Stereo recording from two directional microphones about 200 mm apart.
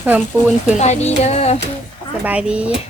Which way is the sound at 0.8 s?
35° left (ahead or behind).